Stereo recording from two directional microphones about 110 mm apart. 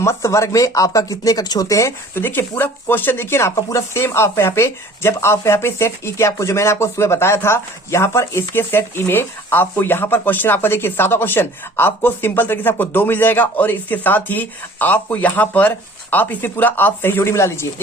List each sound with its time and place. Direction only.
0.0 s speech: 25° left (ahead or behind)